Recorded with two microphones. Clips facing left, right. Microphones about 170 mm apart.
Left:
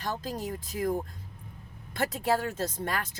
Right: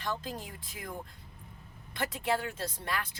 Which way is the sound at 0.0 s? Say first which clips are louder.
Left 4 dB; 40° left (ahead or behind).